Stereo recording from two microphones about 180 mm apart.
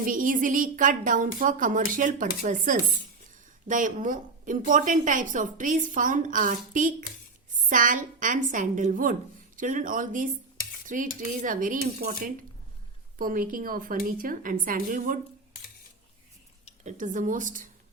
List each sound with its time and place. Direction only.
0.0 s a woman's voice: 50° right (ahead or behind)
10.8 s cutlery: 45° right (ahead or behind)
11.2 s a woman's voice: 50° right (ahead or behind)
16.8 s a woman's voice: 45° right (ahead or behind)